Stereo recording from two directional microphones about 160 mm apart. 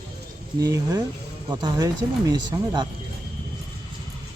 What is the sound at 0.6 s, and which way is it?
Speech, 20° right (ahead or behind).